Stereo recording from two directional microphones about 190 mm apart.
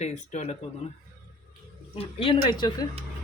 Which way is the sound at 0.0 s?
40° left (ahead or behind).